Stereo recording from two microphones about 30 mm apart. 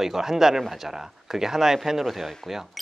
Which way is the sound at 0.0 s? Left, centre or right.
Centre.